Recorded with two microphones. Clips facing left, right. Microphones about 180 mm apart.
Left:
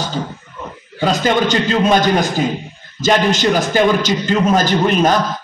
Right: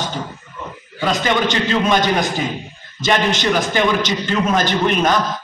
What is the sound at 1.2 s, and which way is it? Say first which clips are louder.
Speech: left 3 dB; 45° left (ahead or behind).